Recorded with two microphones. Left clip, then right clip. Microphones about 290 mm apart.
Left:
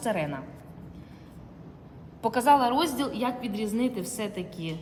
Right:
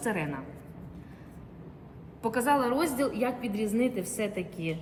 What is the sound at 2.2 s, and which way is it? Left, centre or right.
A woman's voice, centre.